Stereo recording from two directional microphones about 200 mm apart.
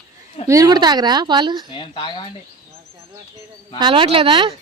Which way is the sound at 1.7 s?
25° left (ahead or behind).